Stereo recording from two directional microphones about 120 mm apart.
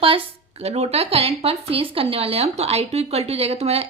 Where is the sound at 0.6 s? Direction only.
60° right (ahead or behind).